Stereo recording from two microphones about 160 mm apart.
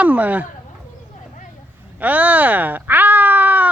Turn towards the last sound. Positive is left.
turn(degrees=-10)  # may be behind; listen again after turning